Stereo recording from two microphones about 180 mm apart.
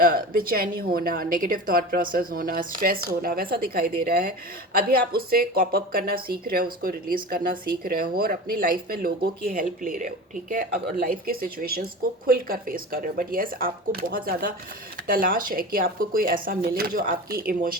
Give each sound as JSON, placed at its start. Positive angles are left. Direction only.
{"t": 0.0, "sound": "a woman's voice", "side_deg": -55}